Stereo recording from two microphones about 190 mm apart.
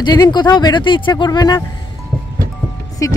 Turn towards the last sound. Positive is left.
turn(degrees=15)  # may be behind; listen again after turning